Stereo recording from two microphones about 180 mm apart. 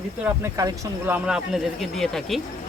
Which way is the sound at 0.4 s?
15° right (ahead or behind).